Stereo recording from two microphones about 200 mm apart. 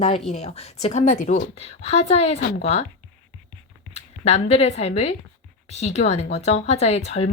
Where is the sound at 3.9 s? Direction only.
35° left (ahead or behind).